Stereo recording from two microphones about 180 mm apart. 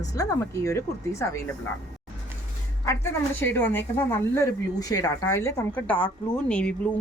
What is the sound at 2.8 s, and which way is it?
A woman's voice, 15° left (ahead or behind).